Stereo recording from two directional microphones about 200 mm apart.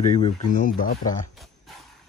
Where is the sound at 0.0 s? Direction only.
35° left (ahead or behind).